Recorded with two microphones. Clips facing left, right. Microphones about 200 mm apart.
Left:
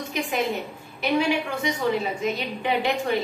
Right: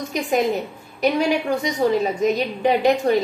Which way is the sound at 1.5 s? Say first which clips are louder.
Right 5 dB; 40° right (ahead or behind).